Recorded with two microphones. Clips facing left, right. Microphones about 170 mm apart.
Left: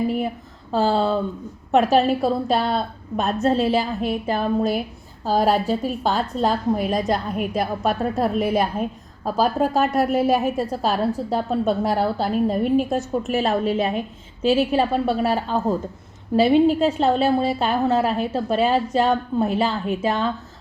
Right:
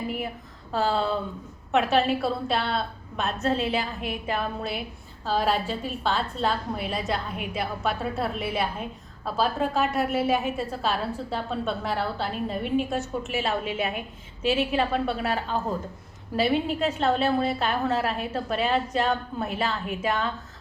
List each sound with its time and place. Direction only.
0.7 s a woman's voice: 30° left (ahead or behind)
16.8 s a woman's voice: 30° left (ahead or behind)